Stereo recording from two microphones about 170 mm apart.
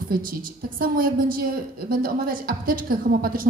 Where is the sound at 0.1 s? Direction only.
55° right (ahead or behind).